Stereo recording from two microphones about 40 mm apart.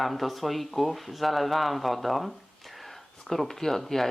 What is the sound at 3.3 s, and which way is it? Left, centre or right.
Speech, centre.